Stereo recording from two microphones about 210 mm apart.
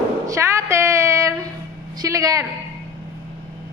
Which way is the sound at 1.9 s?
15° right (ahead or behind).